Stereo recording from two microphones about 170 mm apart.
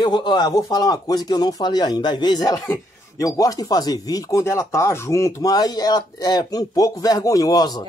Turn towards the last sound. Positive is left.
turn(degrees=25)  # may be behind; listen again after turning